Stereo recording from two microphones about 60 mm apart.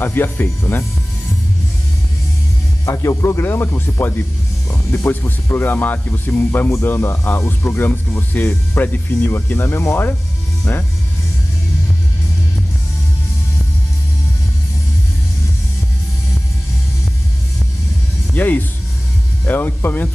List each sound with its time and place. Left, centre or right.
0.0 s speech: left
2.8 s music: left
3.4 s speech: left
18.3 s speech: left